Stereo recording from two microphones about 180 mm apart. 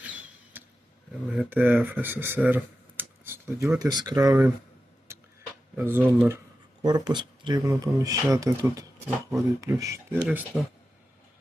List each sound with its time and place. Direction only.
0.0 s vehicle: 10° right (ahead or behind)
1.4 s speech: 10° right (ahead or behind)
5.7 s speech: 10° right (ahead or behind)
6.8 s speech: 20° right (ahead or behind)
10.2 s speech: 5° right (ahead or behind)